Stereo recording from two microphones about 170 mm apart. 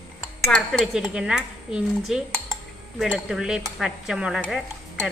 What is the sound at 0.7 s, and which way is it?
Stir, centre (ahead or behind).